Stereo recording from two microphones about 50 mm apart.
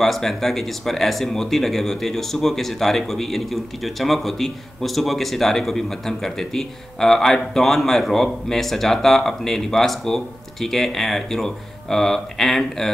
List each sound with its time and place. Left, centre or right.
0.0 s speech: centre